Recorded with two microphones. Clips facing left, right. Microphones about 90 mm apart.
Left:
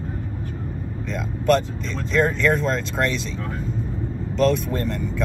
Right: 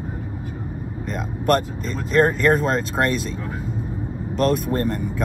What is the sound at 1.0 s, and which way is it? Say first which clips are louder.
Speech: left 1 dB; 5° right (ahead or behind).